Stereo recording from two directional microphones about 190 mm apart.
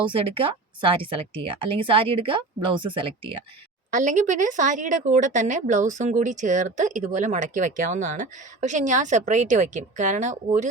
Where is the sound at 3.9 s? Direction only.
40° right (ahead or behind).